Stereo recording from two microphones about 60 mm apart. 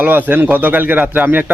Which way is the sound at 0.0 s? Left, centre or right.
Right.